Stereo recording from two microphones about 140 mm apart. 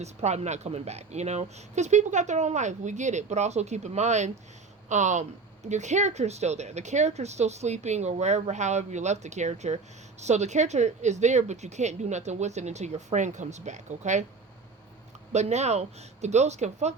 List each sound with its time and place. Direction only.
0.0 s speech: 50° right (ahead or behind)
15.3 s speech: 55° right (ahead or behind)